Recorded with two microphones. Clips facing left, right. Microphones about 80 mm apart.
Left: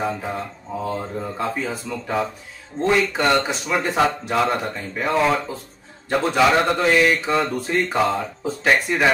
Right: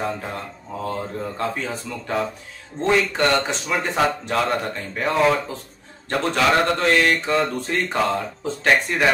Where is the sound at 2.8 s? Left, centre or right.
Centre.